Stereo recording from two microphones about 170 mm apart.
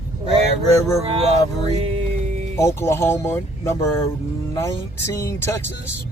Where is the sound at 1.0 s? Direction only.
35° right (ahead or behind).